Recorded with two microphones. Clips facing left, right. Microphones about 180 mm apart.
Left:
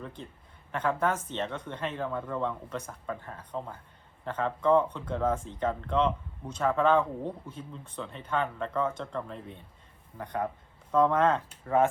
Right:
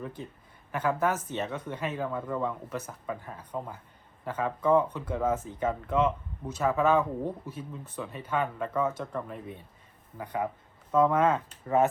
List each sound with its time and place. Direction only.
0.0 s speech: 10° right (ahead or behind)